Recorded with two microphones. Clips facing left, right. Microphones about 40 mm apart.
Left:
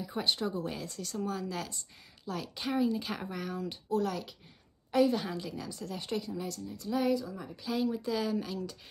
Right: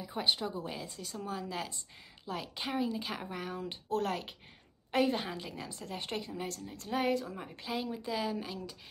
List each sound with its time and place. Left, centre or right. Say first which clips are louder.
0.0 s speech: left 1 dB; centre
3.9 s a woman's voice: left 1 dB; right; by 8.7 s centre